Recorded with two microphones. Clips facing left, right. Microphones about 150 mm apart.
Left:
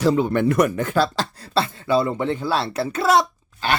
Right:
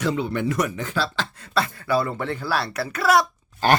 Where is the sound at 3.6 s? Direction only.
45° right (ahead or behind).